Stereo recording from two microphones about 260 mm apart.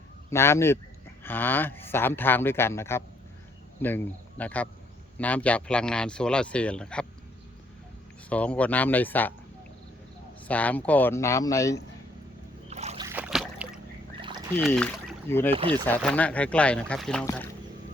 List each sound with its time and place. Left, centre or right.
0.3 s speech: centre
8.3 s speech: centre
10.5 s speech: centre
12.7 s boat: right
13.1 s boat: centre
14.2 s rodents: centre
14.5 s speech: centre
15.5 s speech: right
15.9 s speech: centre